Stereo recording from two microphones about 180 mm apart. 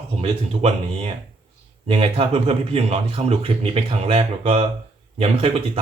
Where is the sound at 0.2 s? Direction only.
35° right (ahead or behind).